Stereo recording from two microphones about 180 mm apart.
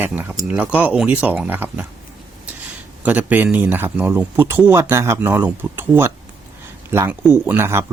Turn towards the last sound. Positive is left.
turn(degrees=-15)  # may be behind; listen again after turning